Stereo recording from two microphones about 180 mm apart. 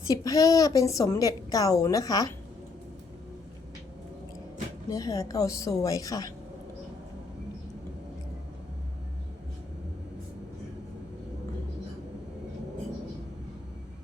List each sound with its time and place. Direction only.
0.1 s a woman's voice: 20° left (ahead or behind)
4.9 s a woman's voice: 20° left (ahead or behind)